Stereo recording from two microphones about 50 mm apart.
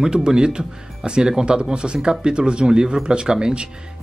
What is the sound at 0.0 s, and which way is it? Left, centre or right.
Speech, centre.